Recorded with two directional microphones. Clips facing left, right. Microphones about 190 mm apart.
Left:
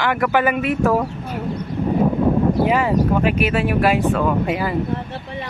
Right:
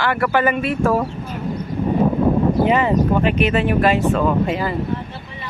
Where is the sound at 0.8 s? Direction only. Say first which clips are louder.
Even; 5° left (ahead or behind).